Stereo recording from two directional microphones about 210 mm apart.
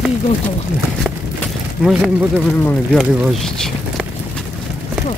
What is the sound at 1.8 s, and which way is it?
Speech, centre (ahead or behind).